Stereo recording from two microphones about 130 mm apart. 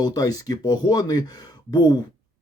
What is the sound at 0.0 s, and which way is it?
Speech, 30° left (ahead or behind).